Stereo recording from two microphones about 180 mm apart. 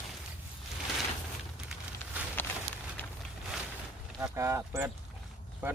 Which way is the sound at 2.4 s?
10° left (ahead or behind).